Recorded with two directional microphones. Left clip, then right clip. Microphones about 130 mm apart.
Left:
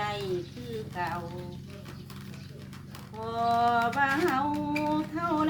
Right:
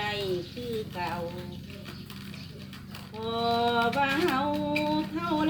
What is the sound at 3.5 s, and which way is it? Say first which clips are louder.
Speech: left 1 dB; 15° left (ahead or behind).